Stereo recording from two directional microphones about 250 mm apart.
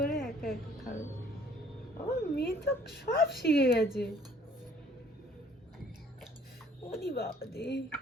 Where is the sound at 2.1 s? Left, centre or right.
Left.